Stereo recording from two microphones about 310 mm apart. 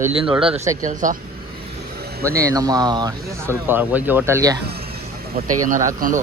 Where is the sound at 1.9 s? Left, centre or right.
Right.